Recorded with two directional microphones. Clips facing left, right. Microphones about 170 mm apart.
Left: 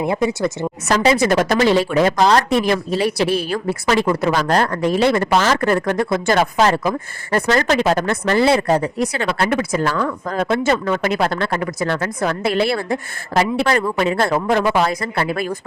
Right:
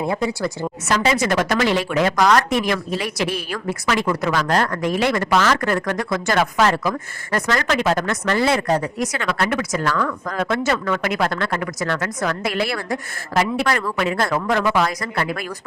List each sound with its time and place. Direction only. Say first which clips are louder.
0.0 s a woman's voice: left 3 dB; 20° left (ahead or behind)
0.9 s a woman's voice: left 4 dB; 35° left (ahead or behind)